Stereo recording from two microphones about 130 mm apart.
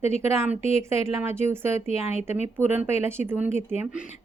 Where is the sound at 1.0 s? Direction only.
20° right (ahead or behind).